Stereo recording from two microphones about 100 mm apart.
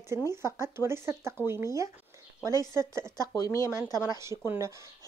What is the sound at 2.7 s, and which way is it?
Speech, 30° right (ahead or behind).